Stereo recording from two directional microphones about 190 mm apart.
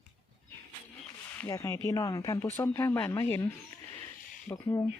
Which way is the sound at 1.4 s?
15° left (ahead or behind).